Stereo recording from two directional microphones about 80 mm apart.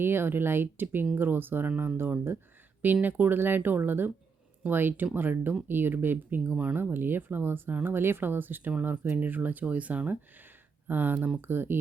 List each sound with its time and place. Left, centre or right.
0.0 s speech: right